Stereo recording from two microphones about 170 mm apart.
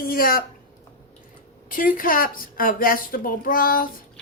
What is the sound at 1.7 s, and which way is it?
A woman's voice, 55° left (ahead or behind).